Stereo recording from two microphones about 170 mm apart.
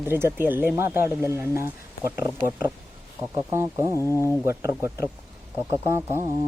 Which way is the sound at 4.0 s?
15° left (ahead or behind).